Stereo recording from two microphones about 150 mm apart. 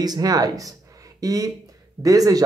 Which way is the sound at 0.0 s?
25° right (ahead or behind).